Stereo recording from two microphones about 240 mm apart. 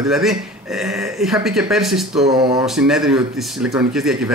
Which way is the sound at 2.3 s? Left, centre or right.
Centre.